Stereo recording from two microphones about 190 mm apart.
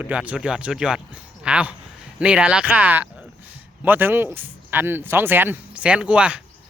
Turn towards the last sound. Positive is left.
turn(degrees=-5)  # may be behind; listen again after turning